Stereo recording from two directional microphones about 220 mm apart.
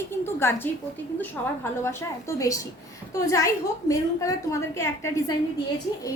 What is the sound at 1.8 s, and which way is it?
A woman's voice, 15° left (ahead or behind).